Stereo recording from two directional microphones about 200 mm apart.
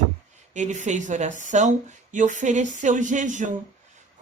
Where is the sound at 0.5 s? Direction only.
35° right (ahead or behind).